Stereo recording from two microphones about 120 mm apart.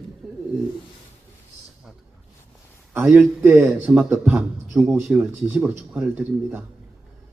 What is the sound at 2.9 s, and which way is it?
Speech, 10° right (ahead or behind).